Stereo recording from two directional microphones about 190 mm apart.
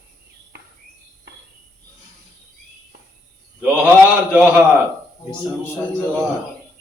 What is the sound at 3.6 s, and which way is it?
A man's voice, 5° right (ahead or behind).